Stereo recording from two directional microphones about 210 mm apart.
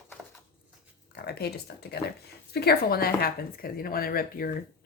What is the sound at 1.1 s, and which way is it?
A woman's voice, 50° left (ahead or behind).